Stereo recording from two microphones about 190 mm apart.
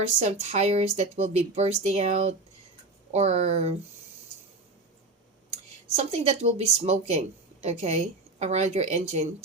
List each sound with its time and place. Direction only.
0.2 s a woman's voice: 35° right (ahead or behind)
6.0 s a woman's voice: 35° right (ahead or behind)